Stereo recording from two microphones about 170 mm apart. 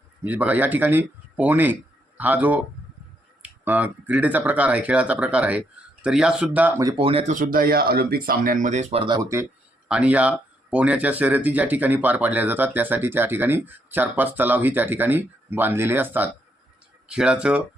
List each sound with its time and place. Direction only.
0.3 s speech: 10° right (ahead or behind)
6.8 s speech: 30° right (ahead or behind)
7.3 s speech: 55° right (ahead or behind); by 9.5 s 20° right (ahead or behind)
9.9 s speech: 10° right (ahead or behind)